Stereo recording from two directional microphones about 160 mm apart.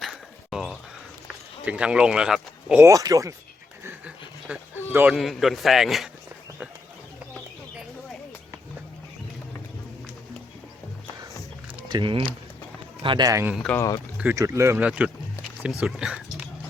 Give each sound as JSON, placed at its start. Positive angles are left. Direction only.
{"t": 0.0, "sound": "a sound", "side_deg": -5}
{"t": 1.6, "sound": "speech", "side_deg": -5}
{"t": 2.8, "sound": "a man's voice", "side_deg": -20}
{"t": 3.8, "sound": "a sound", "side_deg": -5}
{"t": 5.1, "sound": "speech", "side_deg": 0}
{"t": 11.9, "sound": "a man's voice", "side_deg": -30}
{"t": 13.5, "sound": "speech", "side_deg": 0}
{"t": 13.7, "sound": "speech", "side_deg": 20}
{"t": 14.2, "sound": "speech", "side_deg": -15}